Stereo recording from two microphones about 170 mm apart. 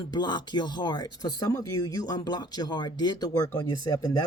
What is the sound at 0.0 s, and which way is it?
Speech, 25° left (ahead or behind).